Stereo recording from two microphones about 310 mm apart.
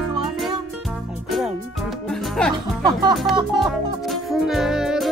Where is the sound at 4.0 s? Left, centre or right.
Centre.